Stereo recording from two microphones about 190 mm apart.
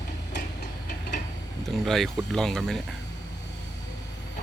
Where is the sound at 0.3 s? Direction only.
45° left (ahead or behind).